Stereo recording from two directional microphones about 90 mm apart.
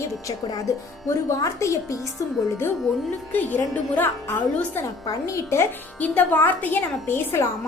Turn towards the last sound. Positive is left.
turn(degrees=25)  # may be behind; listen again after turning